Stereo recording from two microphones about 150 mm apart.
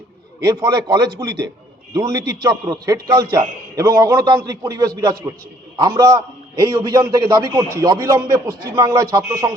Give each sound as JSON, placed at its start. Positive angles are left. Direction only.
{"t": 0.4, "sound": "a man's voice", "side_deg": -25}